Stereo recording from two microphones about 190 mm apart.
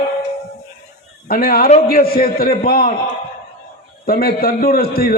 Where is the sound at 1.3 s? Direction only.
50° left (ahead or behind).